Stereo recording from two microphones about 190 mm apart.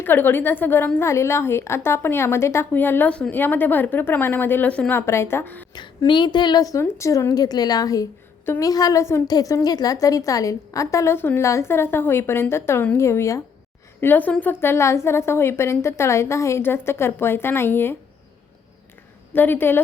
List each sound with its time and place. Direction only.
0.0 s a woman's voice: 10° left (ahead or behind)
5.7 s a woman's voice: 25° left (ahead or behind)
19.3 s a woman's voice: 10° left (ahead or behind)